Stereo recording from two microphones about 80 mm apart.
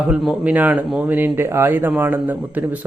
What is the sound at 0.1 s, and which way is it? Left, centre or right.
A man's voice, centre.